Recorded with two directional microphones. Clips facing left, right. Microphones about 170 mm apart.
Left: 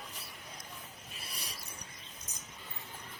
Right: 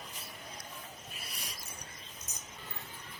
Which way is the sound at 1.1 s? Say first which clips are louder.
Even; 30° left (ahead or behind).